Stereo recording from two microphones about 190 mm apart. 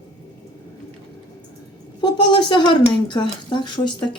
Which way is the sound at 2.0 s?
25° left (ahead or behind).